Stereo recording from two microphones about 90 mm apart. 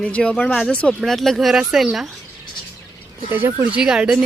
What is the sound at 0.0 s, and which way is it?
Speech, 10° left (ahead or behind).